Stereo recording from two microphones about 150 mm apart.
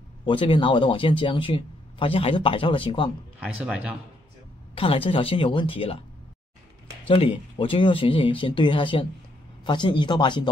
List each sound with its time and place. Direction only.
0.2 s speech: 35° left (ahead or behind)
3.3 s speech: 5° right (ahead or behind)
4.7 s speech: 35° left (ahead or behind)
7.1 s speech: 35° left (ahead or behind)